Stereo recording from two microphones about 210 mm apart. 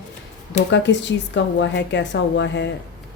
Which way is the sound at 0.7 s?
60° left (ahead or behind).